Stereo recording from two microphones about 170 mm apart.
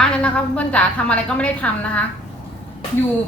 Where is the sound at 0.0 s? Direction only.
5° left (ahead or behind).